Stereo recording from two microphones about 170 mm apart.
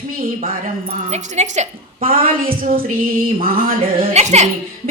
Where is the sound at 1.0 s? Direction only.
45° right (ahead or behind).